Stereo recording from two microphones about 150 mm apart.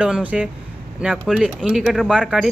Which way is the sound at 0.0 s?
10° right (ahead or behind).